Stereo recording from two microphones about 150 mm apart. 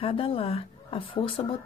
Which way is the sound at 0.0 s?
35° left (ahead or behind).